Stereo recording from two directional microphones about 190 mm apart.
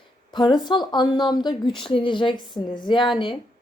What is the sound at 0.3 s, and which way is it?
Speech, 25° left (ahead or behind).